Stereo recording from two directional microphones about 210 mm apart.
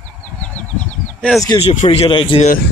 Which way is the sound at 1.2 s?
Centre (ahead or behind).